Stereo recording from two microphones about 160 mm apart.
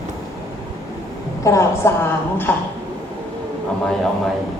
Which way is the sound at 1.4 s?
20° left (ahead or behind).